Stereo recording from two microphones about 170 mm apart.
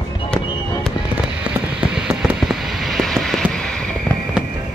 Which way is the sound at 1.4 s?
5° right (ahead or behind).